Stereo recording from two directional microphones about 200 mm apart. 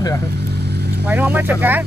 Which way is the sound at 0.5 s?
55° right (ahead or behind).